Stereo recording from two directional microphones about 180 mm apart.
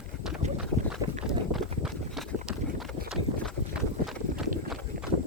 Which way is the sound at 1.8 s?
Centre (ahead or behind).